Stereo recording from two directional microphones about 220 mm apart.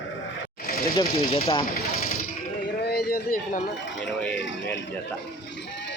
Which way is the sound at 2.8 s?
45° left (ahead or behind).